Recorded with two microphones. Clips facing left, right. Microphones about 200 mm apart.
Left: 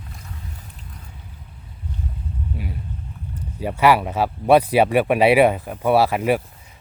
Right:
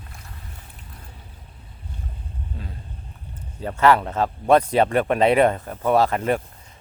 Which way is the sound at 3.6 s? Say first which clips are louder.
Left 1 dB; 10° left (ahead or behind).